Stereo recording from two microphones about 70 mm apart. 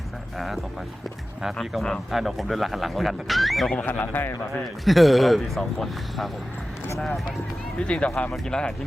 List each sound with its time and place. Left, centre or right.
0.3 s speech: centre
3.8 s speech: left
4.5 s speech: centre
7.8 s speech: centre